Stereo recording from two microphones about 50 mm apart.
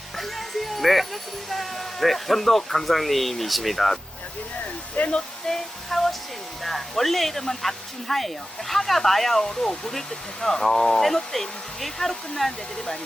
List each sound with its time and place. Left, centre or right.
0.2 s speech: centre
4.9 s speech: left
5.5 s speech: centre